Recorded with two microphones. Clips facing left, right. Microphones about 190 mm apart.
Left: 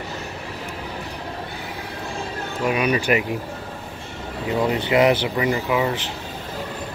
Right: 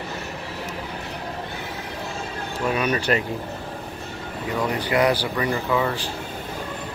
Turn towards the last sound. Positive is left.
turn(degrees=15)  # may be behind; listen again after turning